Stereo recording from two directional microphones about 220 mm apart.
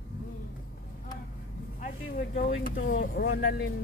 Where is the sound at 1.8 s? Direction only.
40° left (ahead or behind).